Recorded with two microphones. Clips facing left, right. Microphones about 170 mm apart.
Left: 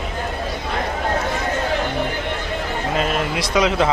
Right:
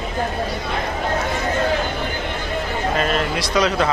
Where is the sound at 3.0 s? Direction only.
15° left (ahead or behind).